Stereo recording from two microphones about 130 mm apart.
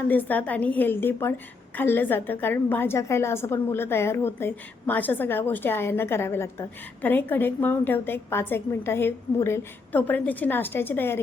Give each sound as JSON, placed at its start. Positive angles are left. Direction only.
{"t": 0.1, "sound": "a woman's voice", "side_deg": 15}